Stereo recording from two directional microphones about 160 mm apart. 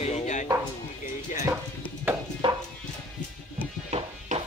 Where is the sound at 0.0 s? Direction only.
45° left (ahead or behind).